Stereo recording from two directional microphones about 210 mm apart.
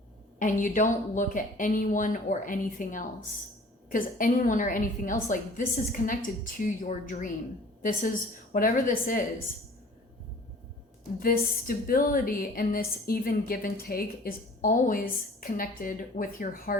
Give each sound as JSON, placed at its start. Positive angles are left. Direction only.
{"t": 0.3, "sound": "a woman's voice", "side_deg": 40}
{"t": 11.2, "sound": "a woman's voice", "side_deg": 45}